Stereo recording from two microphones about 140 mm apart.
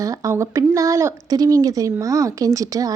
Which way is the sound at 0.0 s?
25° right (ahead or behind).